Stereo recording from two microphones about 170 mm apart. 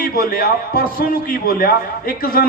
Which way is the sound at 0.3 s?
65° left (ahead or behind).